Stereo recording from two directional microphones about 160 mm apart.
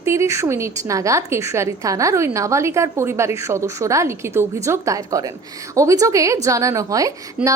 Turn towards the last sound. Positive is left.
turn(degrees=-20)  # may be behind; listen again after turning